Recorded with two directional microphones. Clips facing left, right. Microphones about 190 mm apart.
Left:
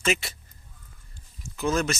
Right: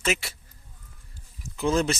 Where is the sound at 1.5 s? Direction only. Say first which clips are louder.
Right 2 dB; 25° right (ahead or behind).